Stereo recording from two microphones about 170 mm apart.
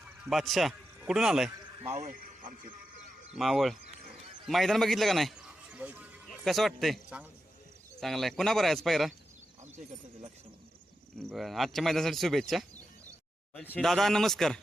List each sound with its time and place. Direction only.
0.0 s a man's voice: centre (ahead or behind)
1.8 s speech: 40° right (ahead or behind)
3.3 s a man's voice: centre (ahead or behind)
11.3 s speech: centre (ahead or behind)